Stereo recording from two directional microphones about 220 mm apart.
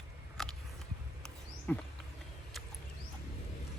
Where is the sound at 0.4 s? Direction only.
Centre (ahead or behind).